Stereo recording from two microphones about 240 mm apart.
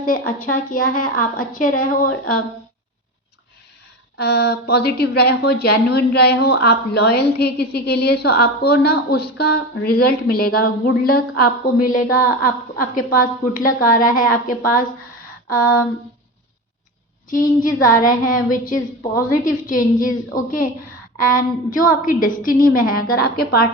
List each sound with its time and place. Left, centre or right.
0.0 s a woman's voice: left
2.0 s a sound: left
4.2 s a woman's voice: left
17.2 s a woman's voice: left